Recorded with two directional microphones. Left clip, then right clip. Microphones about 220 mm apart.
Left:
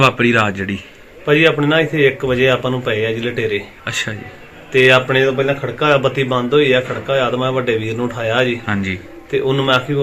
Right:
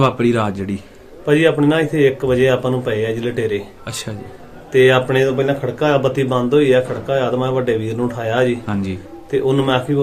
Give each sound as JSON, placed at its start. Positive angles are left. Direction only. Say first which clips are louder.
{"t": 0.0, "sound": "speech", "louder": "left 3 dB", "side_deg": 0}
{"t": 1.2, "sound": "speech", "louder": "left 1 dB", "side_deg": -15}
{"t": 4.7, "sound": "speech", "louder": "left 1 dB", "side_deg": -15}
{"t": 8.6, "sound": "speech", "louder": "left 4 dB", "side_deg": 5}
{"t": 9.3, "sound": "speech", "louder": "left 1 dB", "side_deg": -15}